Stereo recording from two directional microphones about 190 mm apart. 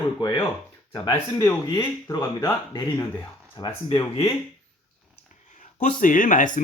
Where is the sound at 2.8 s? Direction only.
10° left (ahead or behind).